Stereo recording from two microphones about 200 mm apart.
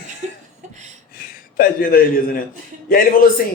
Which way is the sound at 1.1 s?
45° left (ahead or behind).